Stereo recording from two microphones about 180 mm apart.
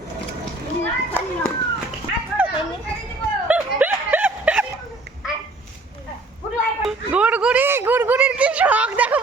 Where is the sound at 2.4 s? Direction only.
10° right (ahead or behind).